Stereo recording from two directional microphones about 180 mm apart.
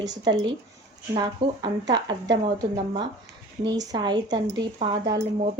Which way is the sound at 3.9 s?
25° right (ahead or behind).